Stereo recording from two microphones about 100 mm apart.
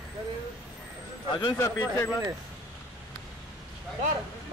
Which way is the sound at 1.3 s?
50° left (ahead or behind).